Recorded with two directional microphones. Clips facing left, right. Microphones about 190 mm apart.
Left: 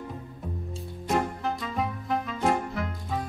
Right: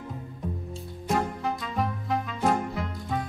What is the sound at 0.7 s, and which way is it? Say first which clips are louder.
Music: left 1 dB; centre (ahead or behind).